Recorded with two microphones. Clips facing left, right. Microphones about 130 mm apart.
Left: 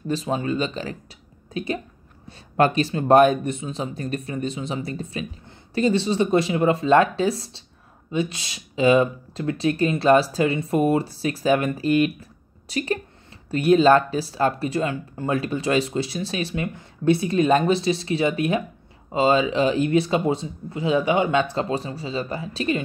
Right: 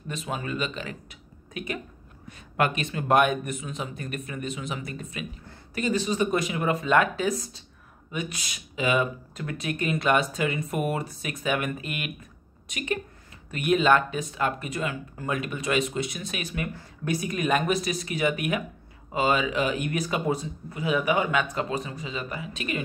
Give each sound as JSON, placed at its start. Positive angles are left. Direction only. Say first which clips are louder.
{"t": 0.1, "sound": "a woman's voice", "louder": "left 8 dB", "side_deg": 30}